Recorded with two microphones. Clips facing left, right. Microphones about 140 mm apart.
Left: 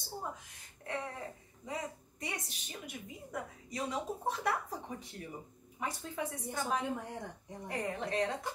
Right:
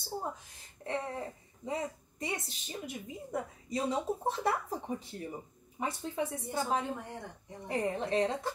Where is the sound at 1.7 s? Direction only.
25° right (ahead or behind).